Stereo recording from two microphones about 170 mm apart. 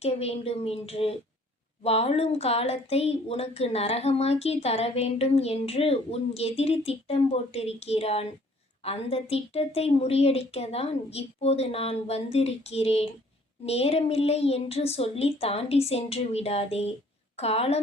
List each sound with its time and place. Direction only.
0.0 s a woman's voice: 35° left (ahead or behind)